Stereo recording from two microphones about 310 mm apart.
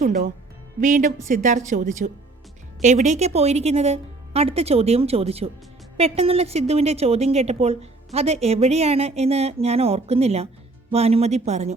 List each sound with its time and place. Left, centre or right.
0.8 s a woman's voice: right